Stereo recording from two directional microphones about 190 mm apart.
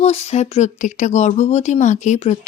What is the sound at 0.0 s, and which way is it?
A woman's voice, 35° left (ahead or behind).